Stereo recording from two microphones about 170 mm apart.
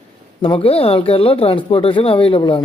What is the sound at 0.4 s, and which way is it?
Speech, 35° left (ahead or behind).